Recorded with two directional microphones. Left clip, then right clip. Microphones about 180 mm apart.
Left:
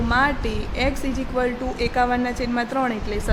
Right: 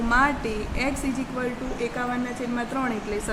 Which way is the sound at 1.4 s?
25° left (ahead or behind).